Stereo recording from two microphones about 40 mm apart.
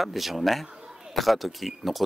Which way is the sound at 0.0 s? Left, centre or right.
Centre.